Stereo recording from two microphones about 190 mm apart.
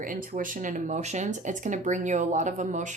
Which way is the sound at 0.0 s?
45° right (ahead or behind).